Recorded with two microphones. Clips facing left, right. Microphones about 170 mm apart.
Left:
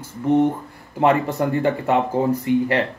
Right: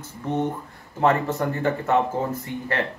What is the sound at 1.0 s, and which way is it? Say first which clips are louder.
Speech: left 3 dB; 15° left (ahead or behind).